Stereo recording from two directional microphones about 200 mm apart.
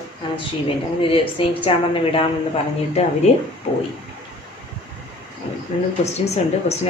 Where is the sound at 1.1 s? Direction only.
25° left (ahead or behind).